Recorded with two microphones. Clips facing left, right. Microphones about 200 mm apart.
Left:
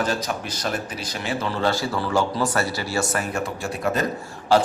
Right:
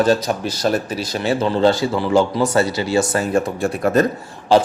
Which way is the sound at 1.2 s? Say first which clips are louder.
Right 8 dB; 25° right (ahead or behind).